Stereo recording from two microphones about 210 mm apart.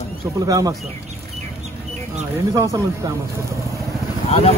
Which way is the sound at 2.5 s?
15° right (ahead or behind).